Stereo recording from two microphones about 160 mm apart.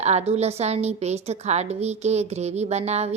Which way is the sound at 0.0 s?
45° right (ahead or behind).